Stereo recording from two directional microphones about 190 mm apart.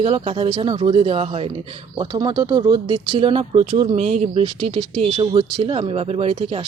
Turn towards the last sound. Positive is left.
turn(degrees=-35)  # may be behind; listen again after turning